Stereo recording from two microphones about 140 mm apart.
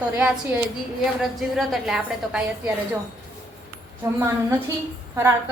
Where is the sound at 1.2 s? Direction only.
Centre (ahead or behind).